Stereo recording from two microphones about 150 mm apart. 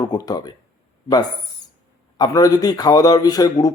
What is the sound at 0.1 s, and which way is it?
Speech, 25° left (ahead or behind).